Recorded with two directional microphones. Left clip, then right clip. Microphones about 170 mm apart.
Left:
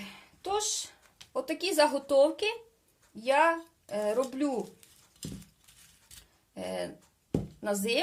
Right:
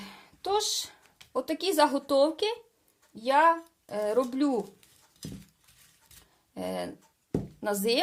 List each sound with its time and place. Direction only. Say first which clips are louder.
0.0 s a sound: right 3 dB; 40° right (ahead or behind)
1.3 s speech: right 2 dB; 35° right (ahead or behind)
6.5 s speech: right 2 dB; 35° right (ahead or behind)